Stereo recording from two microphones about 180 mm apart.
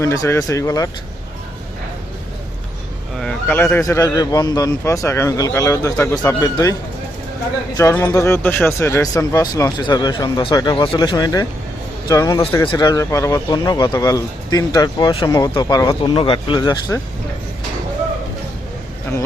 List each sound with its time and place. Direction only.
0.0 s speech: 15° left (ahead or behind)
3.2 s speech: 5° left (ahead or behind)
7.8 s speech: 10° left (ahead or behind)